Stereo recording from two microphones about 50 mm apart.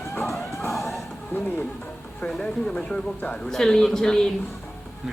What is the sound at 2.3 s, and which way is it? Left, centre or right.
Speech, centre.